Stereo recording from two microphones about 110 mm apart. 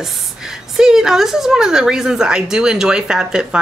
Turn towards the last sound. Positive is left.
turn(degrees=-10)  # may be behind; listen again after turning